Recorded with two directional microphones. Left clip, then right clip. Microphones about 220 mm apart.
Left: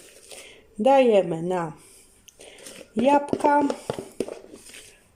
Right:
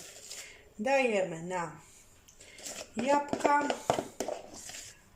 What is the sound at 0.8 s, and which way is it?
Speech, 45° left (ahead or behind).